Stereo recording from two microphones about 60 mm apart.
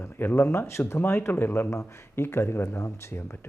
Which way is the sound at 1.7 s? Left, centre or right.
Left.